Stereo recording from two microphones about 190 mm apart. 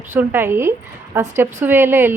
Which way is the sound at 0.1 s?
10° right (ahead or behind).